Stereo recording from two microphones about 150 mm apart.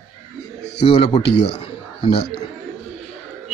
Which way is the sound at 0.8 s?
45° left (ahead or behind).